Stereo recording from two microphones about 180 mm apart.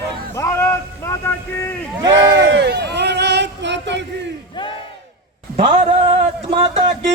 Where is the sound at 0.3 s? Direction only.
15° left (ahead or behind).